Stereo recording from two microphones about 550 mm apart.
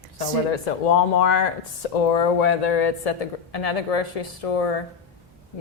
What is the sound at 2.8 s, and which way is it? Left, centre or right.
Speech, left.